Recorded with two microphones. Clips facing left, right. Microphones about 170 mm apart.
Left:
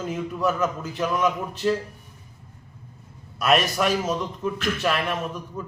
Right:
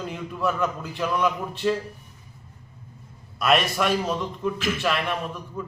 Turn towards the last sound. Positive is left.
turn(degrees=0)  # may be behind; listen again after turning